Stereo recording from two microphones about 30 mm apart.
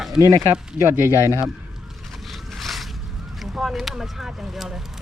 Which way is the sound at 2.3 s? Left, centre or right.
Centre.